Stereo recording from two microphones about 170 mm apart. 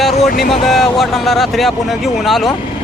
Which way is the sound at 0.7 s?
Centre (ahead or behind).